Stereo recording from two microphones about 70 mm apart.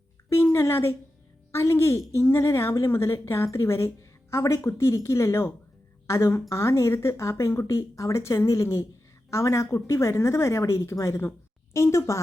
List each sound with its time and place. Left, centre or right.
0.3 s a woman's voice: left